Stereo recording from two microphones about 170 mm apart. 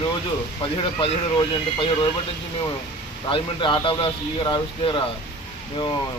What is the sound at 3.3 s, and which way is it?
A man's voice, 30° left (ahead or behind).